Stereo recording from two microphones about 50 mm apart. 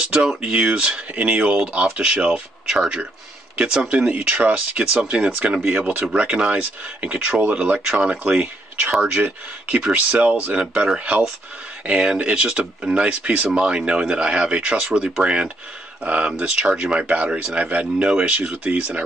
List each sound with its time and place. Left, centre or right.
0.1 s speech: centre
10.1 s speech: right